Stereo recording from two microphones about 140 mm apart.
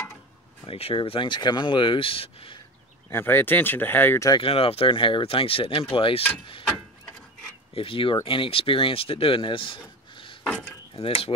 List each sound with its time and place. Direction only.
0.7 s speech: 45° left (ahead or behind)
3.1 s speech: 15° left (ahead or behind)
4.4 s speech: 40° left (ahead or behind)
7.7 s speech: 40° left (ahead or behind)
10.4 s wood: 10° left (ahead or behind)
11.0 s cutlery: 45° left (ahead or behind)